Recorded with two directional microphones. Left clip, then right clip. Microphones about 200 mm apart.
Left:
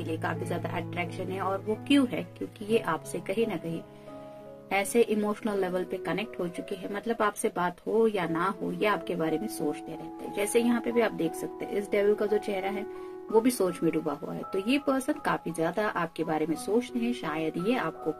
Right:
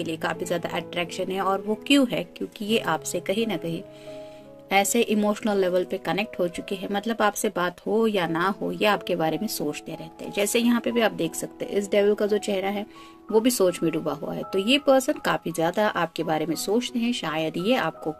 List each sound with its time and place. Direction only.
0.0 s speech: 45° right (ahead or behind)
4.6 s speech: 45° right (ahead or behind)